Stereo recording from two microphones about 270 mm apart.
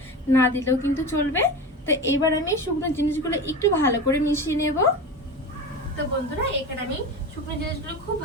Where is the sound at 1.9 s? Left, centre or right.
Left.